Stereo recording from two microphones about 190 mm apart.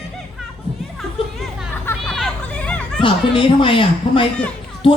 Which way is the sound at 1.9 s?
5° left (ahead or behind).